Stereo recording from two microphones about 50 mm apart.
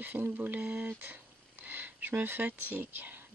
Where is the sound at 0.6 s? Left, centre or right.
Right.